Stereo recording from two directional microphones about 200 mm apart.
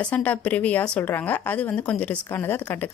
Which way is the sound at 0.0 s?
5° left (ahead or behind).